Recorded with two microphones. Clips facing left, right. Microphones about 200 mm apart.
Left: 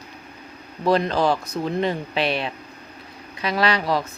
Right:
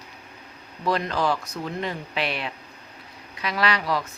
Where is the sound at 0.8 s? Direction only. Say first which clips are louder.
Left 5 dB; 30° left (ahead or behind).